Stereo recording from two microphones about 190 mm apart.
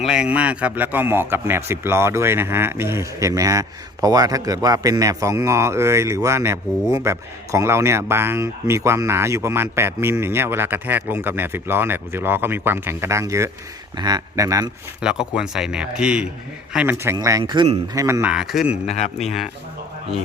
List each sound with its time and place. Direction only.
0.0 s a man's voice: 5° right (ahead or behind)
15.0 s a man's voice: 5° right (ahead or behind)
18.9 s speech: 35° left (ahead or behind)
19.2 s speech: centre (ahead or behind)